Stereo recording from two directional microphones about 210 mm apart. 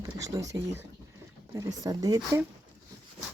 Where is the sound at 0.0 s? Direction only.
15° right (ahead or behind).